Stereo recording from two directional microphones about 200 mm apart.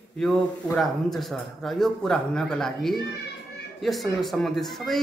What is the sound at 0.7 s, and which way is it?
Speech, centre (ahead or behind).